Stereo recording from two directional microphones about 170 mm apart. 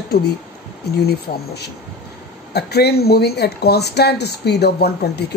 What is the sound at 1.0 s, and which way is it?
Speech, 75° left (ahead or behind).